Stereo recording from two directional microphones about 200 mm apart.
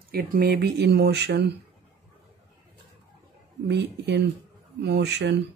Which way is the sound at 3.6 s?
60° right (ahead or behind).